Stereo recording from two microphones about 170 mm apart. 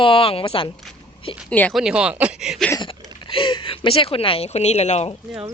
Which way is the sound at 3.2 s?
30° left (ahead or behind).